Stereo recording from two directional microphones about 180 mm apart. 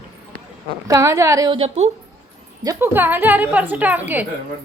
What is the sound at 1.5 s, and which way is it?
Speech, 35° right (ahead or behind).